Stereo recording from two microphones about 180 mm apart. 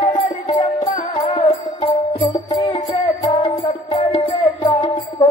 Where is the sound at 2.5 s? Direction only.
20° left (ahead or behind).